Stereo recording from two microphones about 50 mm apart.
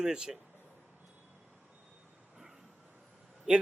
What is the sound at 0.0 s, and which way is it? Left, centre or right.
Speech, centre.